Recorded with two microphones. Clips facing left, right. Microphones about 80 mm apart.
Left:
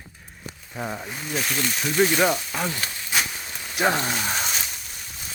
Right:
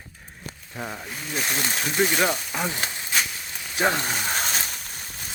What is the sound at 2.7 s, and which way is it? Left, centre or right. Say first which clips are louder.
Speech: right 1 dB; right.